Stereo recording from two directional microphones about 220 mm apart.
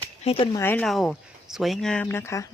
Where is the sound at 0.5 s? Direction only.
10° left (ahead or behind).